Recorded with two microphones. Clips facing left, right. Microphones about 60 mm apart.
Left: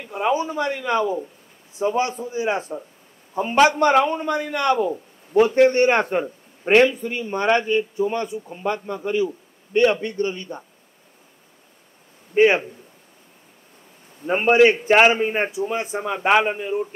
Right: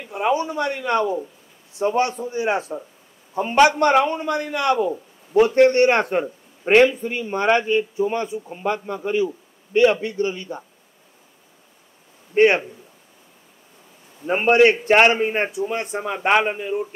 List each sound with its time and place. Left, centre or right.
0.1 s a man's voice: centre
6.9 s speech: right
9.7 s a man's voice: centre
12.4 s a man's voice: centre
14.2 s a man's voice: centre